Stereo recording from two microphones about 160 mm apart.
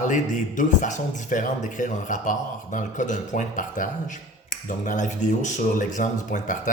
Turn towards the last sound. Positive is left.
turn(degrees=55)  # may be behind; listen again after turning